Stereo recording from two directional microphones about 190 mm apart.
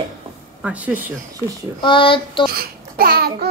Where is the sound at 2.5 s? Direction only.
50° right (ahead or behind).